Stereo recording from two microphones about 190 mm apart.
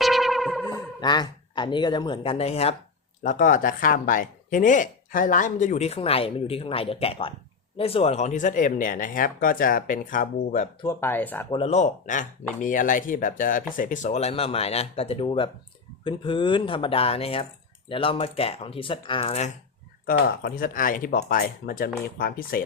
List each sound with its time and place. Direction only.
0.0 s music: centre (ahead or behind)
0.7 s speech: 20° left (ahead or behind)
3.2 s speech: 45° left (ahead or behind)
10.8 s speech: 10° left (ahead or behind)
11.5 s speech: 35° left (ahead or behind)
20.1 s speech: 50° left (ahead or behind)